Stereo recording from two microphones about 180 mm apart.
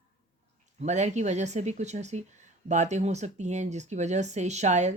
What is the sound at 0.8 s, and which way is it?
Speech, 40° right (ahead or behind).